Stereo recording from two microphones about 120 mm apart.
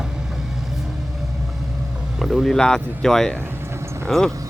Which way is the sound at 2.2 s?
Centre (ahead or behind).